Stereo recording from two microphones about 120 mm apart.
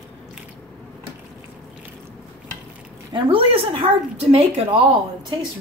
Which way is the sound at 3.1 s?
50° right (ahead or behind).